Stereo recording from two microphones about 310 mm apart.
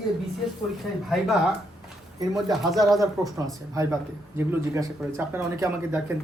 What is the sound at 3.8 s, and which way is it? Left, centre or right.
Speech, centre.